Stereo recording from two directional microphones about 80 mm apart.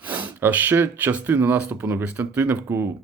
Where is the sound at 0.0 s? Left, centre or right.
Right.